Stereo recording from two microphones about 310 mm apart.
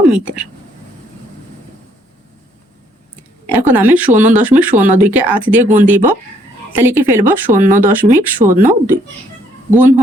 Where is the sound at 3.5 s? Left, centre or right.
Centre.